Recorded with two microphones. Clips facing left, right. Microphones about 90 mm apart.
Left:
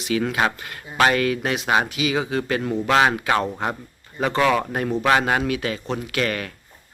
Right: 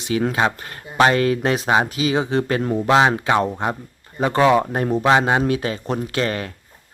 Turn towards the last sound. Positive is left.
turn(degrees=-30)  # may be behind; listen again after turning